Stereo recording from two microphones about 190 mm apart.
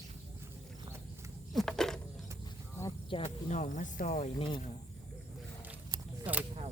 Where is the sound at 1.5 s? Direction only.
5° left (ahead or behind).